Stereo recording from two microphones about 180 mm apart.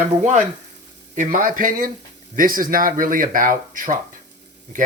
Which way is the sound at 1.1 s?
50° right (ahead or behind).